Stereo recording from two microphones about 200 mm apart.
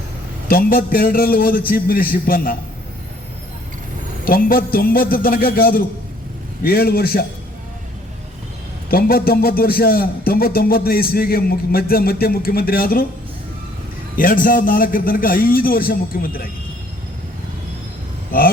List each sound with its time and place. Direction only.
0.4 s speech: 45° left (ahead or behind)
4.3 s speech: 45° left (ahead or behind)
8.9 s speech: 50° left (ahead or behind)
14.2 s speech: 45° left (ahead or behind)
18.3 s speech: 50° left (ahead or behind)